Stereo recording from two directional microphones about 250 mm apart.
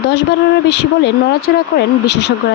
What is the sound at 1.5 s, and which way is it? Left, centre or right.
Speech, left.